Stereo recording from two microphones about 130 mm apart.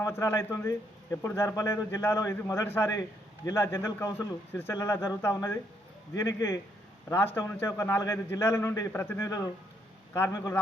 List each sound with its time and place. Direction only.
0.0 s a man's voice: 20° left (ahead or behind)